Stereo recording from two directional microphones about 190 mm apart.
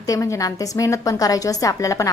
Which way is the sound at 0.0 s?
15° left (ahead or behind).